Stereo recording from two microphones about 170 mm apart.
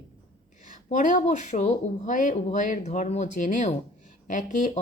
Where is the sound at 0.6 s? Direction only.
50° left (ahead or behind).